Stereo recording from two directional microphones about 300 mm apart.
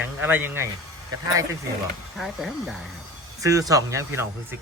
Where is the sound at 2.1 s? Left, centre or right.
Centre.